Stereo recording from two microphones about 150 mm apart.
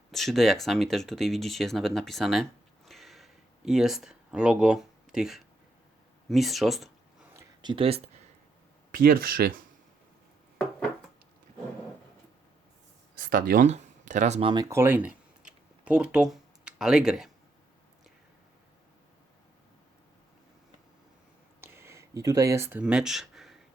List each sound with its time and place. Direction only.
0.1 s speech: centre (ahead or behind)
7.6 s speech: 35° right (ahead or behind)
8.9 s speech: 80° right
13.1 s speech: 70° right (ahead or behind)
13.7 s a sound: 50° right (ahead or behind)
14.4 s speech: 25° right (ahead or behind); by 17.3 s centre (ahead or behind)
21.6 s a sound: 15° right (ahead or behind); by 23.6 s centre (ahead or behind)